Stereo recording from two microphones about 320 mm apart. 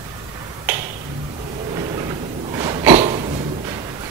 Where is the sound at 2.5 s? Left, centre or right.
Centre.